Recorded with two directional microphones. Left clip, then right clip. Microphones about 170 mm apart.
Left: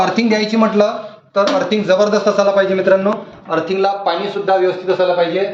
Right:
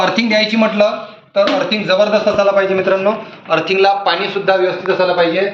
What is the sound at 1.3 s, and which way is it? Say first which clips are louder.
A man's voice: right 1 dB; 75° left (ahead or behind).